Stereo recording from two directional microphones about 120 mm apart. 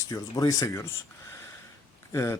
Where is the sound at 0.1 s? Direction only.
25° left (ahead or behind).